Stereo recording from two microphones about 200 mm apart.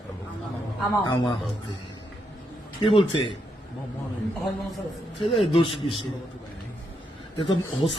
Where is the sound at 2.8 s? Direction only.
25° left (ahead or behind).